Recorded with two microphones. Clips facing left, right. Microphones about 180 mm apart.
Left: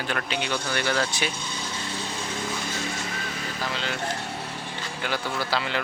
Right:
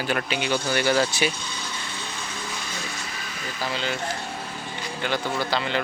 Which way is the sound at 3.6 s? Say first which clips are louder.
Right 3 dB; centre (ahead or behind).